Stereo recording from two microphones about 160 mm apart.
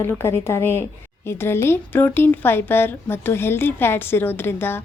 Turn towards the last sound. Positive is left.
turn(degrees=15)  # may be behind; listen again after turning